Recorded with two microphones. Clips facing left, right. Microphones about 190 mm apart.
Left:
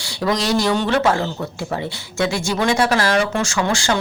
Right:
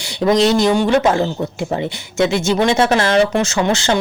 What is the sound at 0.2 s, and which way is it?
Speech, 25° right (ahead or behind).